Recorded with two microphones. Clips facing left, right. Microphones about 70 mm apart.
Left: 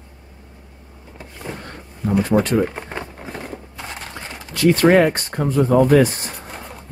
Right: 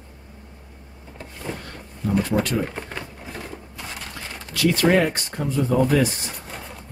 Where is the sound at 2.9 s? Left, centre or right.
Left.